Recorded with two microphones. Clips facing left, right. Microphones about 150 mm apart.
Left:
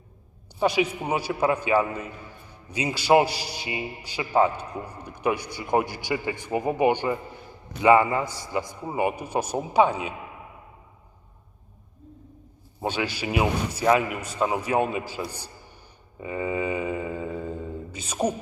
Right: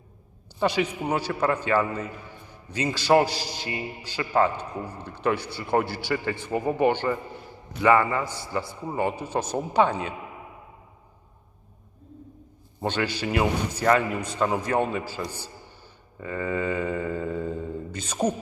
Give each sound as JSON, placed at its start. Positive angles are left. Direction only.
{"t": 0.6, "sound": "a man's voice", "side_deg": 10}
{"t": 12.8, "sound": "a man's voice", "side_deg": 10}
{"t": 16.2, "sound": "mantra", "side_deg": 15}